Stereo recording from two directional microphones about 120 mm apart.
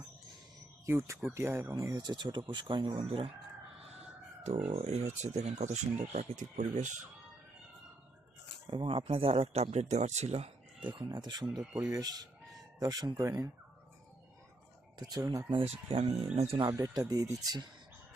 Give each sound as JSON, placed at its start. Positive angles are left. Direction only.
{"t": 0.9, "sound": "speech", "side_deg": -25}
{"t": 2.0, "sound": "speech", "side_deg": -35}
{"t": 4.7, "sound": "speech", "side_deg": -65}
{"t": 8.6, "sound": "speech", "side_deg": -45}
{"t": 10.8, "sound": "speech", "side_deg": -40}
{"t": 14.9, "sound": "speech", "side_deg": -30}
{"t": 15.4, "sound": "speech", "side_deg": -50}
{"t": 16.3, "sound": "speech", "side_deg": -65}
{"t": 16.6, "sound": "speech", "side_deg": -30}